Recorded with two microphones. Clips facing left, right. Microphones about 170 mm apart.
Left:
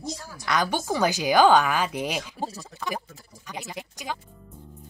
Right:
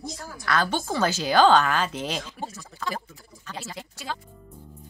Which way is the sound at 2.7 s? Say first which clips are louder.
Right 1 dB; 20° left (ahead or behind).